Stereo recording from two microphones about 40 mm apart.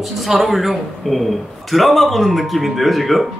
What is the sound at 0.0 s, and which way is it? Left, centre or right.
A man's voice, centre.